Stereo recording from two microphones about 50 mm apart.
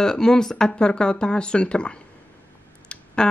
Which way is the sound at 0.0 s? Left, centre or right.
Centre.